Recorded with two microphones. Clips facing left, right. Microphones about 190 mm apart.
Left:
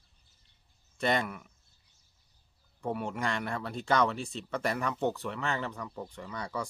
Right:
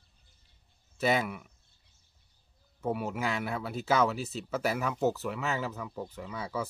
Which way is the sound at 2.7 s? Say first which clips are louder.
Right 2 dB; 5° right (ahead or behind).